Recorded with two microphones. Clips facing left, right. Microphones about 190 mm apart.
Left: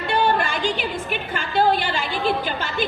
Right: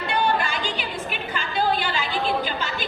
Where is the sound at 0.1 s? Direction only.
50° left (ahead or behind).